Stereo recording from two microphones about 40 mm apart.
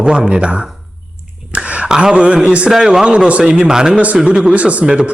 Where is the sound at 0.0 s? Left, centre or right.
Right.